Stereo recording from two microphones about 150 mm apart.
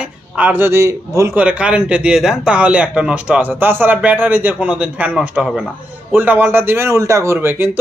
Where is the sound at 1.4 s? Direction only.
10° right (ahead or behind).